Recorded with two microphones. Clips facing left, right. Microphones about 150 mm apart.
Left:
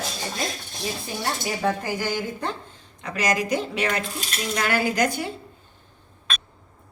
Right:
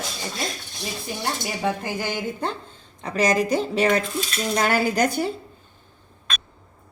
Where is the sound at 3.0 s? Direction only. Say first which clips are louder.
Right 4 dB; 30° right (ahead or behind).